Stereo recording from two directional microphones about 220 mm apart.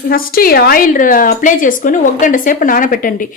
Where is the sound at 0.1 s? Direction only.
40° left (ahead or behind).